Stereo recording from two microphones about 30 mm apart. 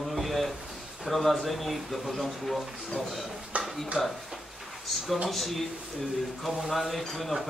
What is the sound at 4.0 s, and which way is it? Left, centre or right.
Speech, centre.